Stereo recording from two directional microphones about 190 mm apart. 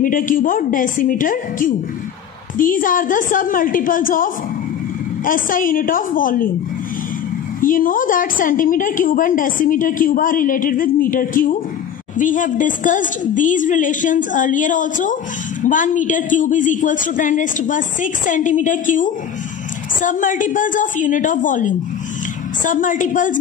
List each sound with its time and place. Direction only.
0.0 s a woman's voice: 45° left (ahead or behind)
7.6 s a woman's voice: 45° left (ahead or behind)